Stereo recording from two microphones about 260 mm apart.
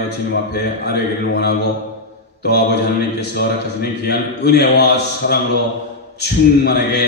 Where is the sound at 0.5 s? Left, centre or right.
Left.